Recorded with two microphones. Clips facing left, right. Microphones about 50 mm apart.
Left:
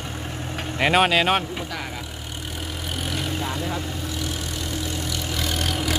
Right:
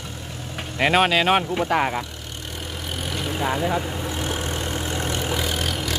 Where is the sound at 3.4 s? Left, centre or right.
Right.